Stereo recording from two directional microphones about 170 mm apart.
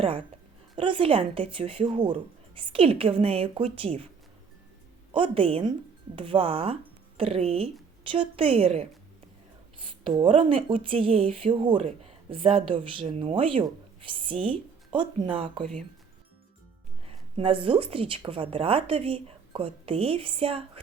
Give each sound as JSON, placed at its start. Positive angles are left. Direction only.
{"t": 0.8, "sound": "speech", "side_deg": -30}
{"t": 5.1, "sound": "speech", "side_deg": -30}
{"t": 10.0, "sound": "speech", "side_deg": -30}
{"t": 17.1, "sound": "speech", "side_deg": -35}